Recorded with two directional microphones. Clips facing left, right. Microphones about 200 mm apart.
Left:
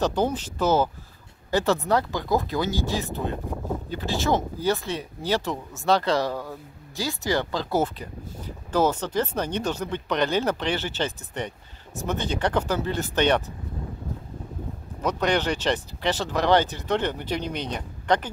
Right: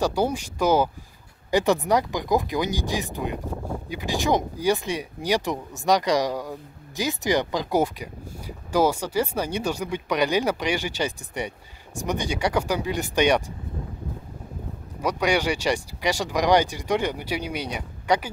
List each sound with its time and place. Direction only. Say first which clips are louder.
0.0 s speech: even; 10° right (ahead or behind)
15.0 s speech: right 1 dB; 10° right (ahead or behind)